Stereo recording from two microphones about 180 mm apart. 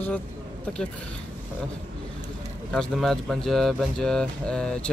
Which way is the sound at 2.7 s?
5° left (ahead or behind).